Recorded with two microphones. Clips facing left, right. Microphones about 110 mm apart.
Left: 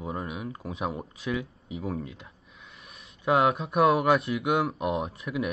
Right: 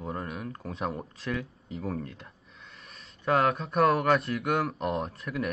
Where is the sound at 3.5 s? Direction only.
5° left (ahead or behind).